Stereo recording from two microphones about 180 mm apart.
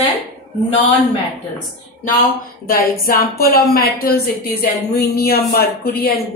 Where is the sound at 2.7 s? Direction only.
55° left (ahead or behind).